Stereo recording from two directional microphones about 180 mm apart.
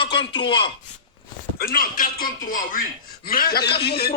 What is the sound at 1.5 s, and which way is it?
A man's voice, 55° left (ahead or behind).